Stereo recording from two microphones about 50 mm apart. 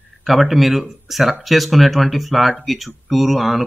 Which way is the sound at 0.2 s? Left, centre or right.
Centre.